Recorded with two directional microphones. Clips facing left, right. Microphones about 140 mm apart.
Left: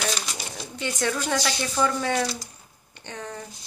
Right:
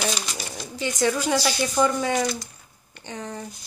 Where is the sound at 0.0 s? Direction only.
5° right (ahead or behind).